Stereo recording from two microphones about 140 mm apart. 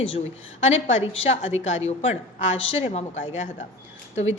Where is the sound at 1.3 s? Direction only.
50° left (ahead or behind).